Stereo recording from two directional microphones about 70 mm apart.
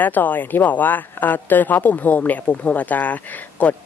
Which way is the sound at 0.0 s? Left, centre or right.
Left.